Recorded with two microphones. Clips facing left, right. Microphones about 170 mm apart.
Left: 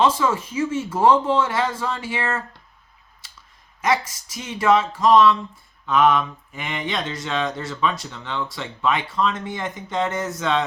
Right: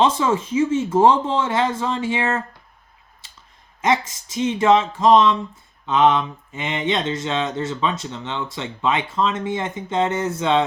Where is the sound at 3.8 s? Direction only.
25° right (ahead or behind).